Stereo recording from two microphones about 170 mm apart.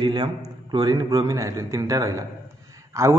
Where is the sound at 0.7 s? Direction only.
25° right (ahead or behind).